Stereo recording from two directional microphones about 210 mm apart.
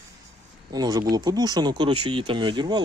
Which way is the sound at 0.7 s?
20° right (ahead or behind).